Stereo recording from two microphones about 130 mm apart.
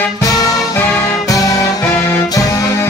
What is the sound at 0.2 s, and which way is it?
Music, 25° left (ahead or behind).